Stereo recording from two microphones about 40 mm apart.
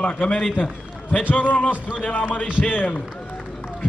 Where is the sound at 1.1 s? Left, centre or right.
Left.